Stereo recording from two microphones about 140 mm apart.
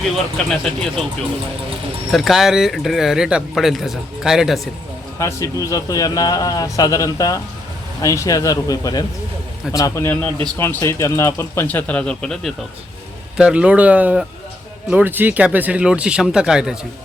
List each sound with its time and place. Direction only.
0.5 s speech: centre (ahead or behind)
2.1 s speech: centre (ahead or behind)
5.2 s a man's voice: 25° left (ahead or behind); by 16.7 s 5° right (ahead or behind)